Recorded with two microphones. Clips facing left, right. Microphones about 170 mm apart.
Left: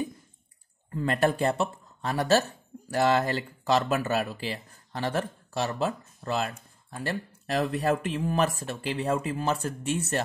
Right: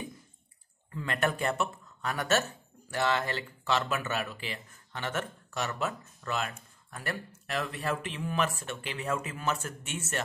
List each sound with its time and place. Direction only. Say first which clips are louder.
0.9 s speech: left 6 dB; 35° left (ahead or behind)